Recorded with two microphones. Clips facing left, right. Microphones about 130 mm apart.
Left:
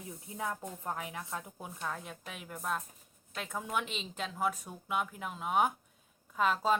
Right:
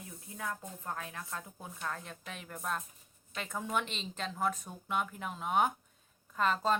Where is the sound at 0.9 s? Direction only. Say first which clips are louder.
Left 2 dB; 15° left (ahead or behind).